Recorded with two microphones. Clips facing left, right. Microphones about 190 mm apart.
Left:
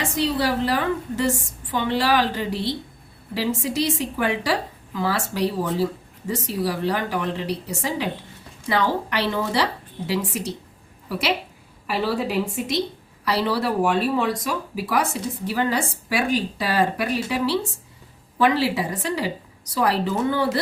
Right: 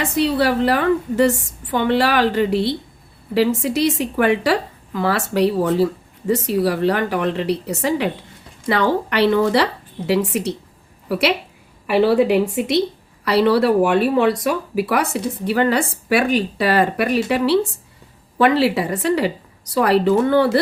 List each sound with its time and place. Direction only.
0.0 s a woman's voice: 60° right (ahead or behind)